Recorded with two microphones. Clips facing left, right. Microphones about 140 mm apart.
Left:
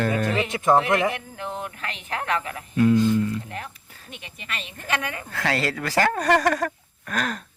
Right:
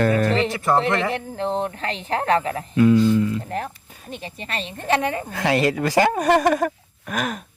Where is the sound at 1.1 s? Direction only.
30° right (ahead or behind).